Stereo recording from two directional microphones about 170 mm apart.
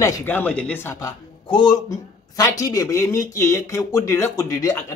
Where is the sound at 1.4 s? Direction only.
25° left (ahead or behind).